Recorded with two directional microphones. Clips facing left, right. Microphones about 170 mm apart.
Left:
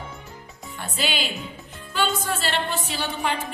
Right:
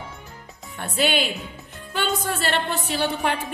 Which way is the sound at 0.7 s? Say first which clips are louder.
Right 6 dB; 60° right (ahead or behind).